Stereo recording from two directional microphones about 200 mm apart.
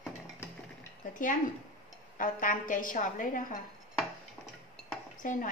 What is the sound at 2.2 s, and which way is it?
A woman's voice, 40° left (ahead or behind).